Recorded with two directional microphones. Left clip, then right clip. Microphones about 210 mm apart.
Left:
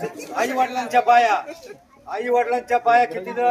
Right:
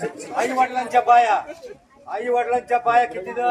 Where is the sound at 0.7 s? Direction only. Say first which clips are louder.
Right 1 dB; 55° left (ahead or behind).